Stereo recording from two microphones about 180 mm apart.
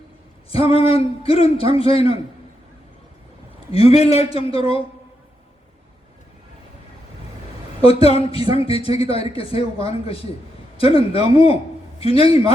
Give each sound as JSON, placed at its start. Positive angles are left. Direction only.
{"t": 0.5, "sound": "speech", "side_deg": 30}
{"t": 3.7, "sound": "speech", "side_deg": 35}
{"t": 7.8, "sound": "a man's voice", "side_deg": 30}